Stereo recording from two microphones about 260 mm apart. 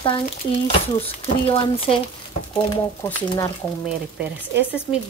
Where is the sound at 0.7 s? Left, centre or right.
Left.